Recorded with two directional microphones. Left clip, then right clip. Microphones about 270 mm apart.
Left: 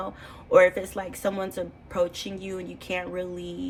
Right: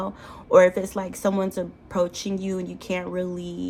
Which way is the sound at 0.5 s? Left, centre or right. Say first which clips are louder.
Right 2 dB; centre.